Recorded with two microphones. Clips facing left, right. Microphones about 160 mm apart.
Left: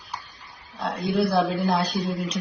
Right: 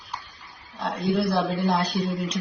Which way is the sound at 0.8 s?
10° left (ahead or behind).